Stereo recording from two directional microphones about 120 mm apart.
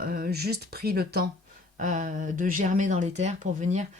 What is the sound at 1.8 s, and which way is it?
Speech, 90° right.